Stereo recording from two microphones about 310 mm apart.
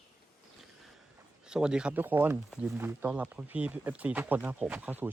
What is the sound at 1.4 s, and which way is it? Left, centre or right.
Speech, centre.